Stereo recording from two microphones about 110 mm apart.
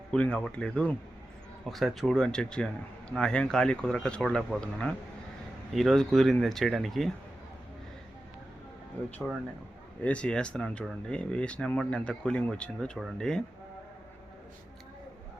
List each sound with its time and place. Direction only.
0.1 s speech: 10° left (ahead or behind)
10.0 s speech: 10° left (ahead or behind)